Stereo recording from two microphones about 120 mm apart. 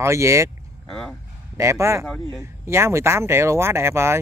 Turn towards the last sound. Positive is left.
turn(degrees=-20)  # may be behind; listen again after turning